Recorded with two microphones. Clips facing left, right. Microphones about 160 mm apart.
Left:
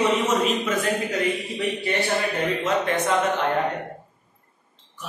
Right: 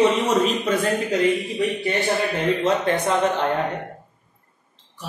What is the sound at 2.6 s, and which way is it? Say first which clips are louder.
Speech: right 1 dB; 30° right (ahead or behind).